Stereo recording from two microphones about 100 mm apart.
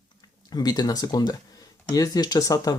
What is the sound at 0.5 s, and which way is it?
Speech, 45° left (ahead or behind).